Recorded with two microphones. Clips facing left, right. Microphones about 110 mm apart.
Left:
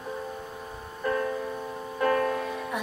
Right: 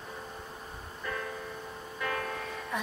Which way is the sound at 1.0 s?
40° left (ahead or behind).